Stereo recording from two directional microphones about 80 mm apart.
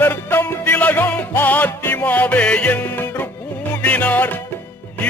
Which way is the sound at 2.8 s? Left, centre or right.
Left.